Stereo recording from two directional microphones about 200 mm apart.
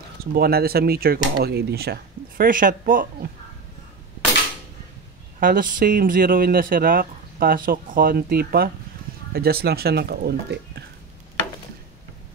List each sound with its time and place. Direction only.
0.2 s speech: 50° right (ahead or behind)
5.4 s speech: 45° right (ahead or behind)